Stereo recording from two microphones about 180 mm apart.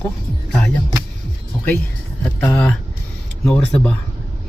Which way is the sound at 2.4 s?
5° left (ahead or behind).